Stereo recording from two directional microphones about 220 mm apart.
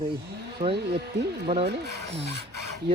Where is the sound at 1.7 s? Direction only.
50° right (ahead or behind).